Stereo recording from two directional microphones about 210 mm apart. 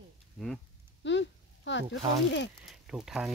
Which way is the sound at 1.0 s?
60° left (ahead or behind).